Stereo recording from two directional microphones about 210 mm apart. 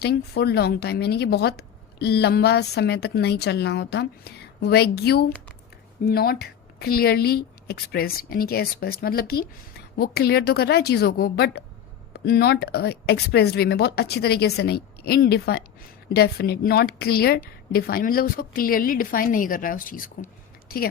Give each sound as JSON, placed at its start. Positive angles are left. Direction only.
{"t": 0.0, "sound": "a woman's voice", "side_deg": 50}